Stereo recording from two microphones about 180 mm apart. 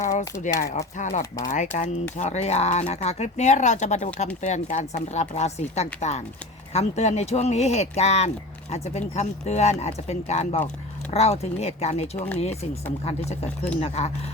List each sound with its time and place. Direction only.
0.4 s speech: 40° left (ahead or behind)
13.8 s speech: 35° left (ahead or behind)